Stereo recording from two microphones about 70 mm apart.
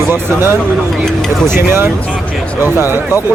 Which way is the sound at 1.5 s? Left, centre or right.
Right.